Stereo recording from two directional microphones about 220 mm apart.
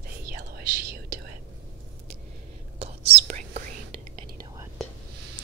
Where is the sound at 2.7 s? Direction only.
25° right (ahead or behind).